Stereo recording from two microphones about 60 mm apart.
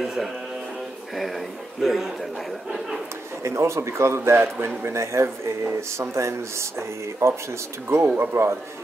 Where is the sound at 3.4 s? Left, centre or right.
Right.